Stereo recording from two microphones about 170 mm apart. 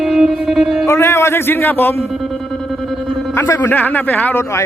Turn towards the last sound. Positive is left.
turn(degrees=10)  # may be behind; listen again after turning